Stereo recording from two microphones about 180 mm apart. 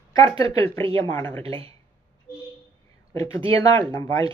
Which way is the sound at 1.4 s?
30° right (ahead or behind).